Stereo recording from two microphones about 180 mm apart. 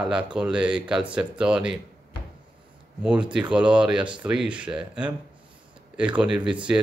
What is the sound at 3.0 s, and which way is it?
Speech, 5° right (ahead or behind).